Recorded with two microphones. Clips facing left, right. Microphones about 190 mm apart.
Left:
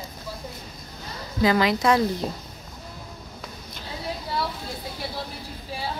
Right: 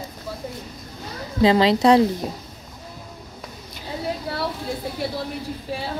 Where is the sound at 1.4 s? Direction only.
25° right (ahead or behind).